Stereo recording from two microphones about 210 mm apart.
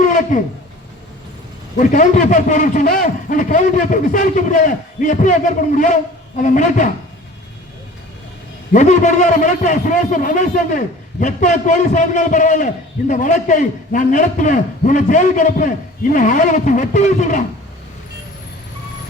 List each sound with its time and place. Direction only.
0.0 s a sound: 35° left (ahead or behind)
1.8 s a man's voice: 35° left (ahead or behind)
8.7 s a man's voice: 35° left (ahead or behind)